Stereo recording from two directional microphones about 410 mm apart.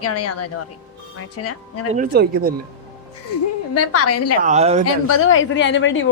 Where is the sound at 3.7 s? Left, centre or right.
Left.